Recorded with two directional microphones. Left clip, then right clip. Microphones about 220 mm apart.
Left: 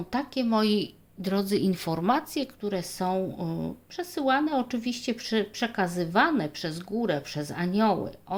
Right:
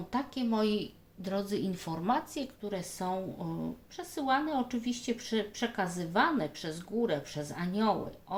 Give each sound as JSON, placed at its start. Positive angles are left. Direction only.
{"t": 0.1, "sound": "speech", "side_deg": 50}